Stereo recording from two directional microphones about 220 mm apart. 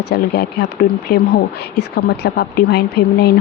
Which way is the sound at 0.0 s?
50° left (ahead or behind).